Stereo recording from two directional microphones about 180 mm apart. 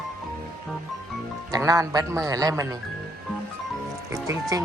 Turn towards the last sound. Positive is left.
turn(degrees=-20)  # may be behind; listen again after turning